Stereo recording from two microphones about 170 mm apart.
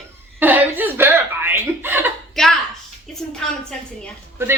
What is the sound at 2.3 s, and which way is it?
A woman's voice, centre (ahead or behind).